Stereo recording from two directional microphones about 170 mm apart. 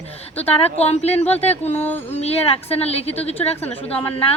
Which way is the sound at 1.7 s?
10° left (ahead or behind).